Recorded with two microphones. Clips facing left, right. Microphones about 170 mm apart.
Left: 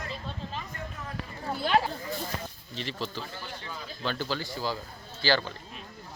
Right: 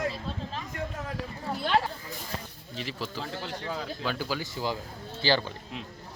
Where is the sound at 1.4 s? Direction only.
5° left (ahead or behind).